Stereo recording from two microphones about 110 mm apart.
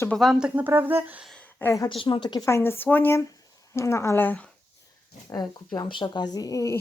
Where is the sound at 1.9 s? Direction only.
50° left (ahead or behind).